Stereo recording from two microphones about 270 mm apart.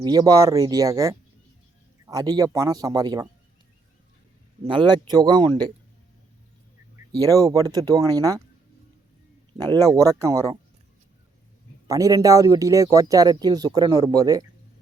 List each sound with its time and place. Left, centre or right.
0.0 s speech: centre
4.6 s speech: centre
7.1 s speech: centre
9.6 s speech: centre
11.9 s speech: centre